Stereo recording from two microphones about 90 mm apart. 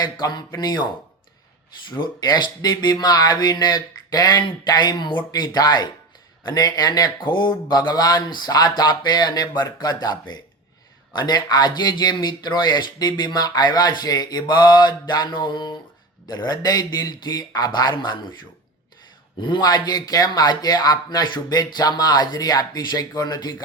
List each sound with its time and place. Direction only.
0.0 s speech: 50° left (ahead or behind)
1.9 s speech: 55° left (ahead or behind)
19.4 s speech: 55° left (ahead or behind)